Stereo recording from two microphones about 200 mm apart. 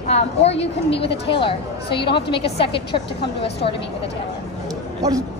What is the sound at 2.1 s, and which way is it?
Speech, 55° left (ahead or behind).